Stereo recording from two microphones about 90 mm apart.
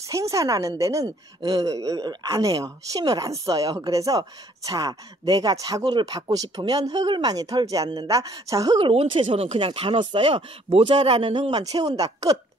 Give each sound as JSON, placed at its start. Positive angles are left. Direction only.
{"t": 0.1, "sound": "speech", "side_deg": -35}
{"t": 8.7, "sound": "speech", "side_deg": -75}
{"t": 11.6, "sound": "speech", "side_deg": -45}